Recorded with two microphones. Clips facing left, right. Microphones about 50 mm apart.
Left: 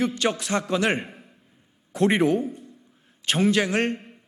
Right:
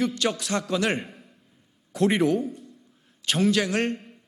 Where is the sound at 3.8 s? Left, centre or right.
Centre.